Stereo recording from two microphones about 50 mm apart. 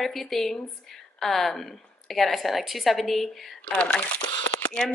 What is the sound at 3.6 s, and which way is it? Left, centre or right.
Speech, left.